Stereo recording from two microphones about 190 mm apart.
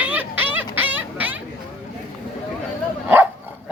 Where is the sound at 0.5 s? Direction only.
10° right (ahead or behind).